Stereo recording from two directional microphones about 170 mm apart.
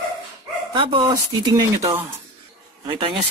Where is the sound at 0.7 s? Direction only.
30° right (ahead or behind).